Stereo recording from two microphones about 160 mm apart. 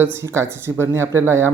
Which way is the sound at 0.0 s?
15° right (ahead or behind).